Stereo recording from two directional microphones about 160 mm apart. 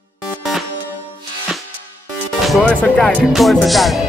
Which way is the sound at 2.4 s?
5° left (ahead or behind).